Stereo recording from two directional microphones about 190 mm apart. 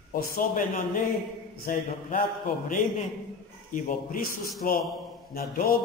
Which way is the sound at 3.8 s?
50° left (ahead or behind).